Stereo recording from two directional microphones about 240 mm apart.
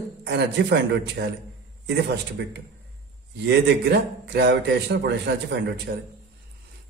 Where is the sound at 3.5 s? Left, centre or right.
Right.